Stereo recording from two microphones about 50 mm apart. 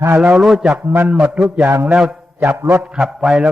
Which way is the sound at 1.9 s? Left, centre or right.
Centre.